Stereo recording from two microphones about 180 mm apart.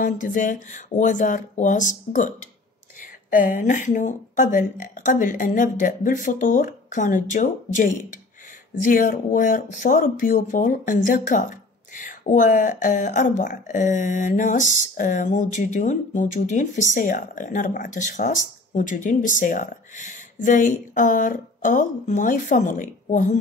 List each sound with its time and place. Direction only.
0.0 s speech: 45° left (ahead or behind)